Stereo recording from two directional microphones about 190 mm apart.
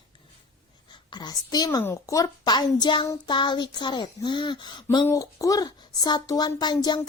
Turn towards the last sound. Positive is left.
turn(degrees=20)  # may be behind; listen again after turning